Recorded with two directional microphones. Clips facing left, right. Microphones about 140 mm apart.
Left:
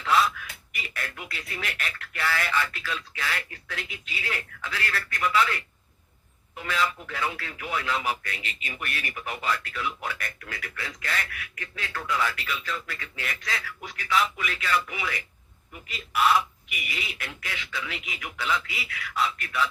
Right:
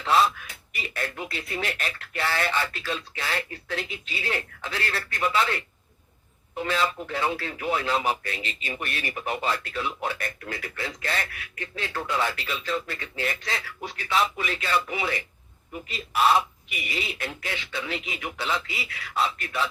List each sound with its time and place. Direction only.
0.0 s speech: 30° right (ahead or behind)